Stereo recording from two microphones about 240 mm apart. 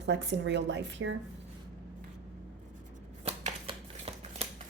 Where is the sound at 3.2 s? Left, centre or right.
Right.